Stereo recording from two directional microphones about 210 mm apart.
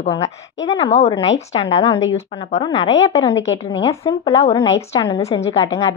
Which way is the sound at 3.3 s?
65° left (ahead or behind).